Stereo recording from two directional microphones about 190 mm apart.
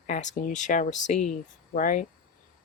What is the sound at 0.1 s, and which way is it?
Speech, 40° left (ahead or behind).